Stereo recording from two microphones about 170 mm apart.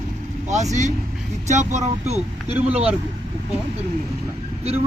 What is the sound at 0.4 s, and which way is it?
Speech, 45° right (ahead or behind).